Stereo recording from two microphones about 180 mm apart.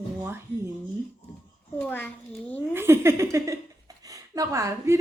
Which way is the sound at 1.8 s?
10° left (ahead or behind).